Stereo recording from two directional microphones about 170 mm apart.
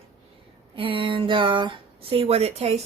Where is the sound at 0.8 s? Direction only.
30° right (ahead or behind).